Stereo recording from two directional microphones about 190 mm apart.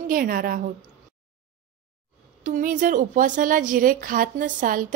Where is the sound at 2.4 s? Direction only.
45° right (ahead or behind).